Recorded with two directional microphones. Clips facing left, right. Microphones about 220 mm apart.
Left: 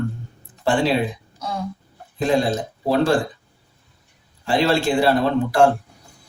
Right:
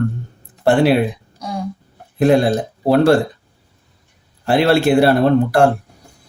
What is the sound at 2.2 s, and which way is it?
Speech, 65° right (ahead or behind).